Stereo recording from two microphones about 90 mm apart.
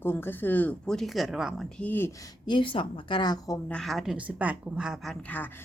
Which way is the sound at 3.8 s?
5° right (ahead or behind).